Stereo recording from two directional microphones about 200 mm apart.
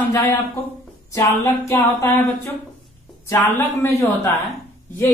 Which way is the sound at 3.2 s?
10° left (ahead or behind).